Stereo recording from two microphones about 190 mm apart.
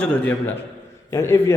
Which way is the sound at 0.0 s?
10° left (ahead or behind).